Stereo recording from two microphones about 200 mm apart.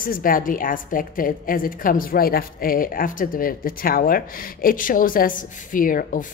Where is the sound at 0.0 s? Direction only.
45° left (ahead or behind).